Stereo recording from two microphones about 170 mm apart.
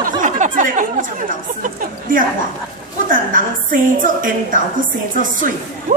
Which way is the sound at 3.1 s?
55° right (ahead or behind).